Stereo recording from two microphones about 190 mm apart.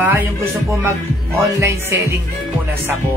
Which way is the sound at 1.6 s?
15° right (ahead or behind).